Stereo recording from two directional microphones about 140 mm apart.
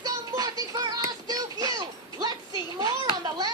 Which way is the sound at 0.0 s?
25° right (ahead or behind).